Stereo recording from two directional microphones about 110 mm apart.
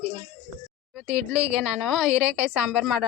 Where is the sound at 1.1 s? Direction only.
10° right (ahead or behind).